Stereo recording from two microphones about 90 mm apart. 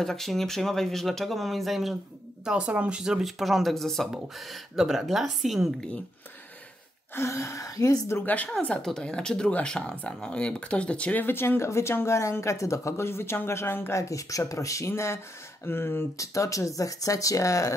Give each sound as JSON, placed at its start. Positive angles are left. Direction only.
{"t": 0.0, "sound": "speech", "side_deg": 5}
{"t": 2.4, "sound": "speech", "side_deg": -10}
{"t": 7.2, "sound": "speech", "side_deg": 30}
{"t": 8.3, "sound": "speech", "side_deg": 15}
{"t": 16.2, "sound": "speech", "side_deg": 35}